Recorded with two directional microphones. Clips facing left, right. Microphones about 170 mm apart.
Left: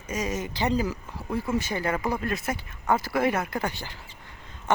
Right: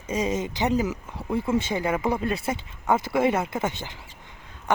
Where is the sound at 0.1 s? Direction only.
25° right (ahead or behind).